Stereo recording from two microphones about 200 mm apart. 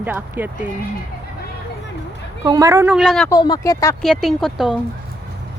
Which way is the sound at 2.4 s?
15° right (ahead or behind).